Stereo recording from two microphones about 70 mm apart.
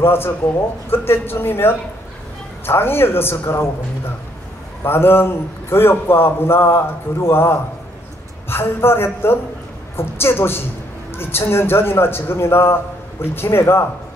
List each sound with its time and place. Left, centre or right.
0.0 s a man's voice: left
4.8 s a man's voice: left